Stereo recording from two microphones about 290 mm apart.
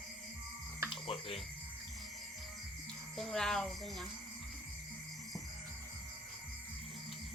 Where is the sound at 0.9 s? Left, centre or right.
Centre.